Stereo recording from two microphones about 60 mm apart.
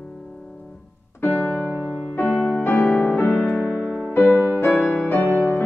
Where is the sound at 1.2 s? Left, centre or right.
Left.